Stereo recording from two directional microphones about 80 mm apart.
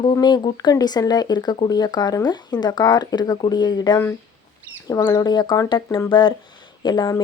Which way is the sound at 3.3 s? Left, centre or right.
Left.